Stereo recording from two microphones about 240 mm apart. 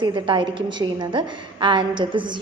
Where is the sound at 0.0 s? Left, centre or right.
Centre.